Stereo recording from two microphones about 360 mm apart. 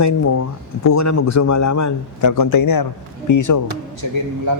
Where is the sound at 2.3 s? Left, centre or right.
Left.